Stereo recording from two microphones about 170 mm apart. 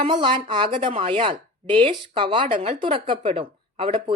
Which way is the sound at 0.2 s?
30° right (ahead or behind).